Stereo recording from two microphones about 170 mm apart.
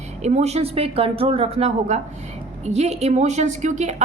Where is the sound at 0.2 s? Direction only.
40° right (ahead or behind).